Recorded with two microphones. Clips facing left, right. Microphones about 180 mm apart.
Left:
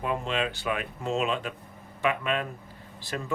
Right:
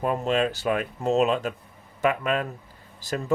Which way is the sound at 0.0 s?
40° right (ahead or behind).